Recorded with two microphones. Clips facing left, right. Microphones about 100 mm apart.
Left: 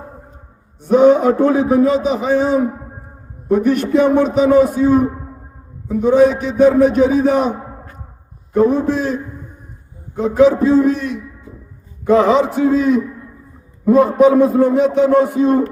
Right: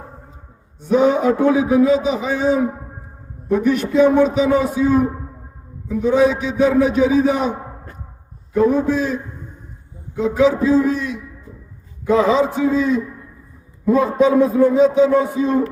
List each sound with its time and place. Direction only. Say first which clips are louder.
0.9 s a man's voice: left 4 dB; 45° left (ahead or behind)
8.5 s a man's voice: left 2 dB; 45° left (ahead or behind); by 13.0 s 60° left (ahead or behind)
14.5 s speech: even; 60° left (ahead or behind)